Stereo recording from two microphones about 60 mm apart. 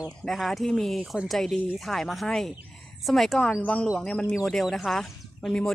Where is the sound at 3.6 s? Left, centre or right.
Left.